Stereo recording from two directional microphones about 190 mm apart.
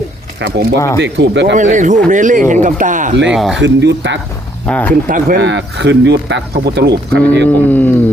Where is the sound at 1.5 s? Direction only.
40° right (ahead or behind).